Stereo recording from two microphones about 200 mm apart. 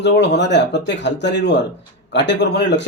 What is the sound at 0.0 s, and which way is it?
A man's voice, 60° left (ahead or behind).